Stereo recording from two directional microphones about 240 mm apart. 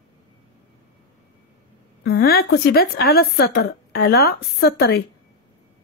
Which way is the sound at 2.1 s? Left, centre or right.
Left.